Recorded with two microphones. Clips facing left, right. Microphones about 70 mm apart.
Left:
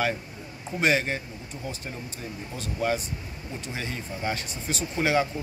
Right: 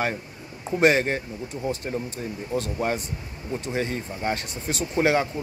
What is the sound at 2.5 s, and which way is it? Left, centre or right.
Speech, right.